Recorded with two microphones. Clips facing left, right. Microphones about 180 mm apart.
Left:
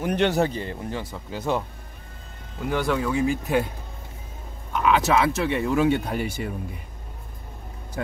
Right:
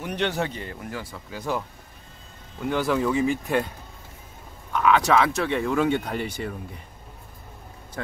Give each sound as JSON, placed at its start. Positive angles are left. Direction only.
{"t": 0.0, "sound": "speech", "side_deg": 45}
{"t": 0.7, "sound": "speech", "side_deg": 25}
{"t": 2.7, "sound": "speech", "side_deg": 0}
{"t": 4.8, "sound": "speech", "side_deg": 5}